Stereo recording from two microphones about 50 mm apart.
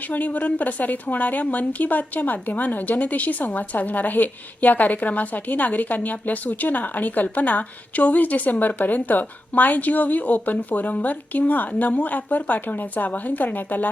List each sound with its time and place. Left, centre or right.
0.1 s a woman's voice: left